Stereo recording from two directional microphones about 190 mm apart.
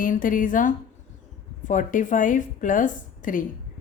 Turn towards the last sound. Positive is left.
turn(degrees=45)  # may be behind; listen again after turning